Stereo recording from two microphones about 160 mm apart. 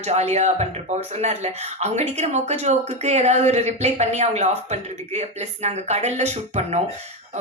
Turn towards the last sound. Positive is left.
turn(degrees=-45)  # may be behind; listen again after turning